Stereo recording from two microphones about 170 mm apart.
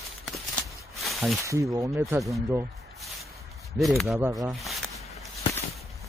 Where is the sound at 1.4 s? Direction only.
20° right (ahead or behind).